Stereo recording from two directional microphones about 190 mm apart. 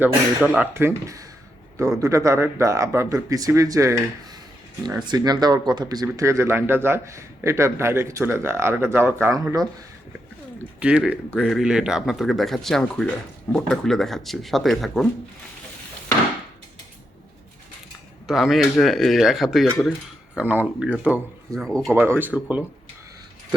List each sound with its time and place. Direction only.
0.0 s speech: 10° right (ahead or behind)
5.0 s speech: 20° right (ahead or behind); by 15.0 s centre (ahead or behind)
18.3 s speech: centre (ahead or behind)
21.9 s speech: 10° right (ahead or behind)